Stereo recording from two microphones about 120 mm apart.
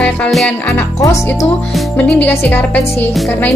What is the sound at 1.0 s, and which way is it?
Music, 25° left (ahead or behind).